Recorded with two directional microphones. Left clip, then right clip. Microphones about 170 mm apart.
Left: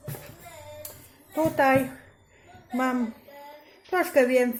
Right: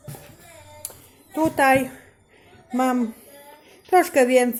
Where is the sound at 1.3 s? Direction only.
55° right (ahead or behind).